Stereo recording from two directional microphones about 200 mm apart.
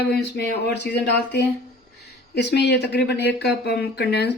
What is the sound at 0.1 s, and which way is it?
Speech, 55° left (ahead or behind).